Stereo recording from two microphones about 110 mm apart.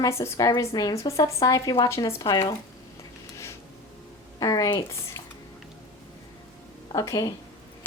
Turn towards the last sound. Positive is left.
turn(degrees=30)  # may be behind; listen again after turning